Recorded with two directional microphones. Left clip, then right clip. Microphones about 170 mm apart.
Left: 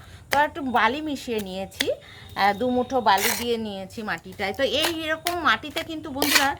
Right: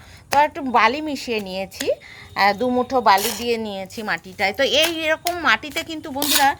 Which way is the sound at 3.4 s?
30° right (ahead or behind).